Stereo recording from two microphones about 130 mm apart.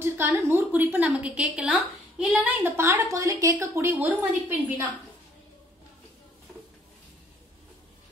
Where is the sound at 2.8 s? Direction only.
20° right (ahead or behind).